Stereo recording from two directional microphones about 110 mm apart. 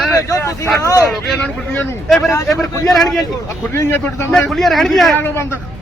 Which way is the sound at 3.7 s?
25° left (ahead or behind).